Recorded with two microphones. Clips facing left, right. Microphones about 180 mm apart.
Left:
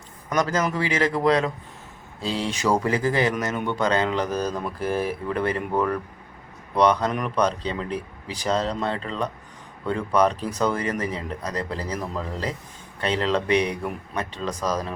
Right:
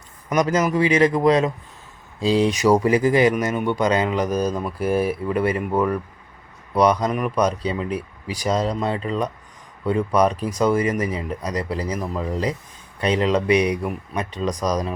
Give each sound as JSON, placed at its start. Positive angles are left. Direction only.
{"t": 0.3, "sound": "speech", "side_deg": -15}